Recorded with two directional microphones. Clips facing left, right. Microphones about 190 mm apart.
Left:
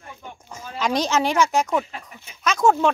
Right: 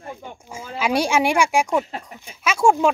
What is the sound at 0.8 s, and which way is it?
Speech, 10° right (ahead or behind).